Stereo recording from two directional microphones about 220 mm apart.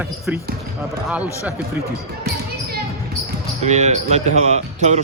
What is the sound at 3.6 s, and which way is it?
Speech, 30° right (ahead or behind).